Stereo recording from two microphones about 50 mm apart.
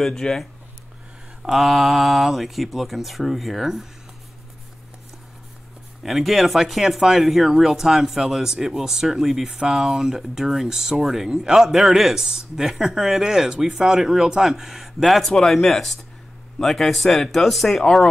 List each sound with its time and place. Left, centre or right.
0.0 s speech: centre
1.4 s speech: centre
6.0 s speech: centre